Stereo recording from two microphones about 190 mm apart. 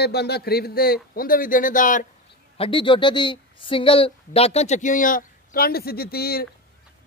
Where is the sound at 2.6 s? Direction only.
25° left (ahead or behind); by 6.5 s 55° left (ahead or behind).